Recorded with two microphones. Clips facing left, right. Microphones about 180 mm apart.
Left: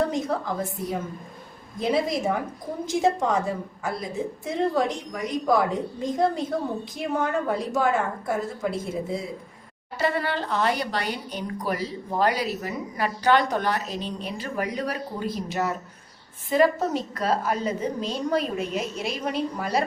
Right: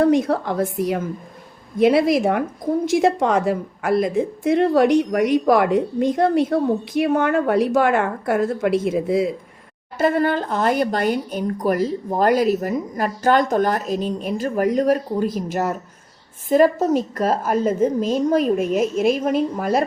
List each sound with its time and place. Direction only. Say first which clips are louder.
0.0 s a woman's voice: right 8 dB; 70° right (ahead or behind); by 1.0 s 85° right
1.8 s a woman's voice: right 9 dB; 75° right (ahead or behind)
10.0 s speech: right 7 dB; 50° right (ahead or behind)